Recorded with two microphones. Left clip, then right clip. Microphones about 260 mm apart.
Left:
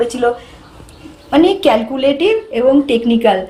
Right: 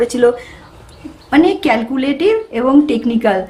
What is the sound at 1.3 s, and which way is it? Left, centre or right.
A woman's voice, centre.